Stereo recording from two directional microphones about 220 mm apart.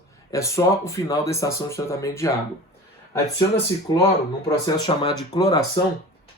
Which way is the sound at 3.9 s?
15° left (ahead or behind).